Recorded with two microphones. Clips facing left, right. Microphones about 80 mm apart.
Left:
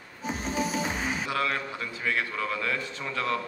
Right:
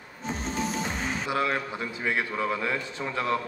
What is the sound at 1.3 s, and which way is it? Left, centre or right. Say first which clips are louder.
A man's voice: right 5 dB; right.